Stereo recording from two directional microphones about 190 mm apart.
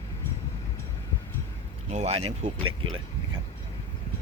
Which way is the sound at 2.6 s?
90° right.